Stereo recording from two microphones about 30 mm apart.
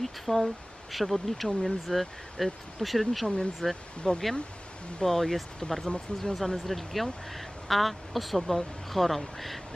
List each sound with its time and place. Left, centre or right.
0.0 s speech: centre
3.6 s speech: left
5.9 s speech: left
6.4 s speech: centre